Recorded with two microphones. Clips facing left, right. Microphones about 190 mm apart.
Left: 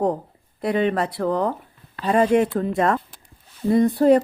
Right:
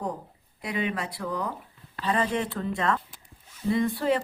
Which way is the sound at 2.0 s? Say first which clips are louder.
Left 9 dB; 45° left (ahead or behind).